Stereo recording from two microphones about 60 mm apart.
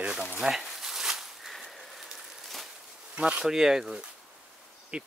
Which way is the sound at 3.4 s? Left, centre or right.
Centre.